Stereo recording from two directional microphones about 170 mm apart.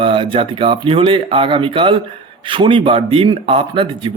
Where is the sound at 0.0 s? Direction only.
30° right (ahead or behind).